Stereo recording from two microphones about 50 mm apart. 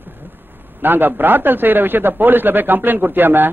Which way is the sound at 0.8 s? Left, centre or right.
Right.